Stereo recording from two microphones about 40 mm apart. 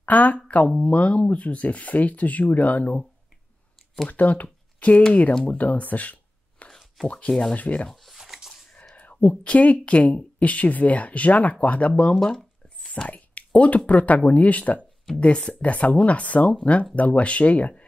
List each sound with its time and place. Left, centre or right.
0.0 s speech: left
0.7 s speech: left
4.1 s speech: left
6.6 s a sound: left
7.2 s speech: centre
7.5 s speech: left
7.9 s speech: centre
8.2 s a sound: centre
8.9 s speech: left
11.9 s speech: left
12.2 s speech: centre
12.6 s whispering: left
13.1 s speech: left
15.1 s speech: left